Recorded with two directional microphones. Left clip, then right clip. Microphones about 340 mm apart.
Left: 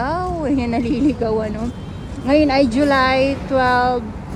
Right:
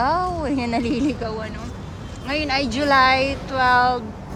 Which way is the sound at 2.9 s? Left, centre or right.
Centre.